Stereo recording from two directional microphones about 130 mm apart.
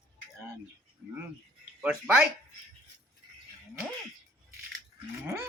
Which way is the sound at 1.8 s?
10° right (ahead or behind).